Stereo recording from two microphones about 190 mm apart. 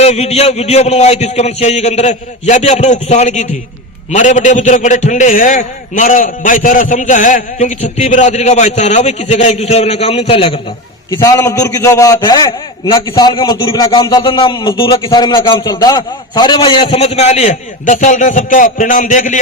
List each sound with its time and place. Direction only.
0.0 s a man's voice: 35° left (ahead or behind)
11.1 s a man's voice: 20° left (ahead or behind); by 19.4 s 40° left (ahead or behind)